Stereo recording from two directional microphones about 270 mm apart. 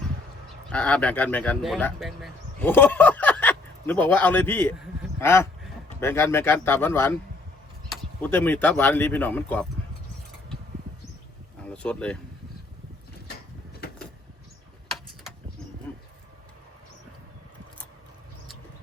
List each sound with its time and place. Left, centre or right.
0.7 s speech: centre
11.7 s speech: centre
13.8 s vehicle: left
14.8 s tick-tock: centre
15.9 s a sound: centre